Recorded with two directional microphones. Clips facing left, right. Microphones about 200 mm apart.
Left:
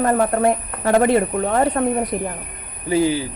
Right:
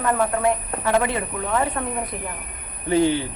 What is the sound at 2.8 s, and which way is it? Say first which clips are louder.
Speech: left 1 dB; 5° left (ahead or behind).